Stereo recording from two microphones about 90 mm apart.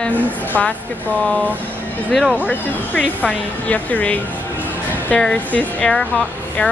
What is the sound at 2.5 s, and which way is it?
Speech, 15° left (ahead or behind).